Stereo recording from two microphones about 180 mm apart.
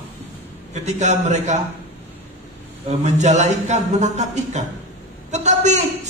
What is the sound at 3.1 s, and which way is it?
A man's voice, 40° right (ahead or behind).